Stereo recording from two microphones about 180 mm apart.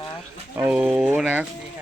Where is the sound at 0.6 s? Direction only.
10° right (ahead or behind).